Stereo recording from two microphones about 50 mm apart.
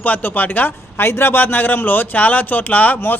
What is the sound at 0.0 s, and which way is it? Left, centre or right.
A man's voice, left.